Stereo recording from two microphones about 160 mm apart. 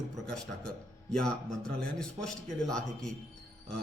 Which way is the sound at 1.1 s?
5° left (ahead or behind).